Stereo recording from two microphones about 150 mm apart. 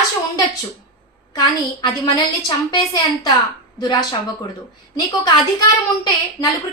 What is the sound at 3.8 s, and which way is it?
Speech, 25° left (ahead or behind).